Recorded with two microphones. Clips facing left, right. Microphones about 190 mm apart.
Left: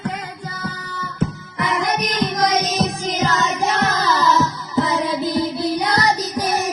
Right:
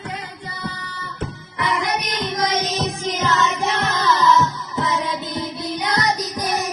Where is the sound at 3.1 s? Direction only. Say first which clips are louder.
Right 3 dB; 40° left (ahead or behind).